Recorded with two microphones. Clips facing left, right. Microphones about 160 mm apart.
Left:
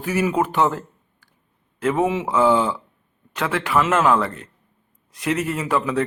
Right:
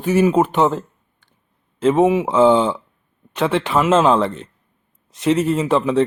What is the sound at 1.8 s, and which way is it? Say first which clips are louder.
Speech: right 6 dB; 20° right (ahead or behind).